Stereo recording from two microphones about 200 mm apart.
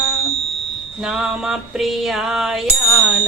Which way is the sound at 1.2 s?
5° right (ahead or behind).